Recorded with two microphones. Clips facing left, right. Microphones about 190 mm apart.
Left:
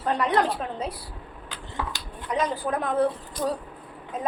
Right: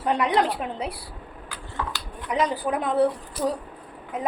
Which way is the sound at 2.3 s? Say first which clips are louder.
Right 2 dB; 10° right (ahead or behind).